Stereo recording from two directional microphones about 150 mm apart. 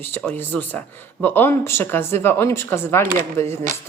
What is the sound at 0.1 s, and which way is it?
A woman's voice, 10° left (ahead or behind).